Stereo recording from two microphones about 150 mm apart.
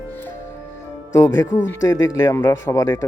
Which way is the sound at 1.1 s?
20° left (ahead or behind).